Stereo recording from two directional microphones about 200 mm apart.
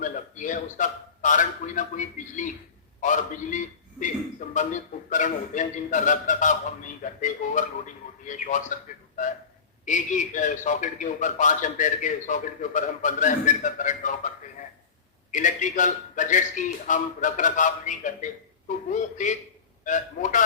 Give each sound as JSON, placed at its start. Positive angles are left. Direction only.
{"t": 0.0, "sound": "a man's voice", "side_deg": 40}
{"t": 3.0, "sound": "a man's voice", "side_deg": 40}
{"t": 15.3, "sound": "a man's voice", "side_deg": 40}